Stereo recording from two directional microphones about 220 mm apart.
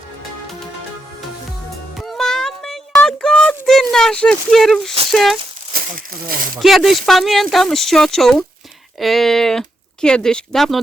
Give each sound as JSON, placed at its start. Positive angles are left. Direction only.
{"t": 2.0, "sound": "a sound", "side_deg": 0}
{"t": 5.1, "sound": "speech", "side_deg": 0}
{"t": 6.2, "sound": "speech", "side_deg": -40}
{"t": 6.6, "sound": "speech", "side_deg": 0}